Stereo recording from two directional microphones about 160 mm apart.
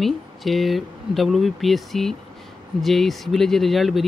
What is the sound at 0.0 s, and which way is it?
Speech, centre (ahead or behind).